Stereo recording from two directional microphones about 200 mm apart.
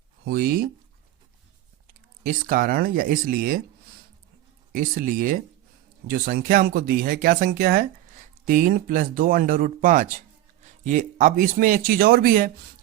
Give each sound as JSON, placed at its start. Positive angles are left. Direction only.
{"t": 0.3, "sound": "speech", "side_deg": -50}
{"t": 1.9, "sound": "speech", "side_deg": -45}
{"t": 4.7, "sound": "a man's voice", "side_deg": -45}